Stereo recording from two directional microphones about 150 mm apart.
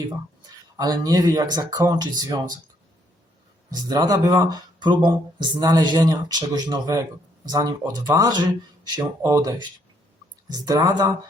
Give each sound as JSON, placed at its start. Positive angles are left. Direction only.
{"t": 0.8, "sound": "speech", "side_deg": -25}
{"t": 3.8, "sound": "speech", "side_deg": -25}